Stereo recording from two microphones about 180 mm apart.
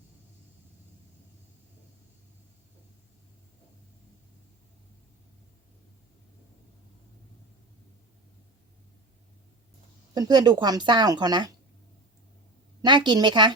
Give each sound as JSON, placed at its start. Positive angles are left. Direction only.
{"t": 10.2, "sound": "speech", "side_deg": -25}
{"t": 12.8, "sound": "speech", "side_deg": -25}